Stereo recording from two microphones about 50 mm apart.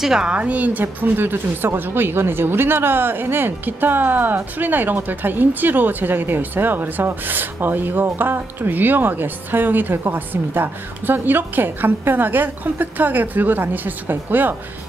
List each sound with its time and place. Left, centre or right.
0.0 s a woman's voice: centre
0.3 s a woman's voice: right